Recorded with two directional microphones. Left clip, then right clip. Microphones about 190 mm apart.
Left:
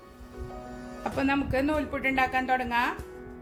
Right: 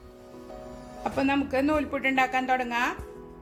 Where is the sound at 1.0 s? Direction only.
15° right (ahead or behind).